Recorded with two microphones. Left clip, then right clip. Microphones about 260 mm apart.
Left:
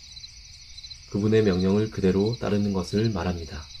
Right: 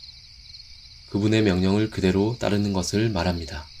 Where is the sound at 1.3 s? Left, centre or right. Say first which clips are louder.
Left 1 dB; right.